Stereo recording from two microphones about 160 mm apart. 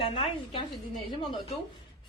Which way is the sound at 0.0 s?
35° left (ahead or behind).